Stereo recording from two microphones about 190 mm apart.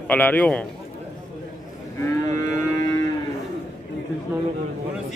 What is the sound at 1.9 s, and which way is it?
Moo, 15° left (ahead or behind).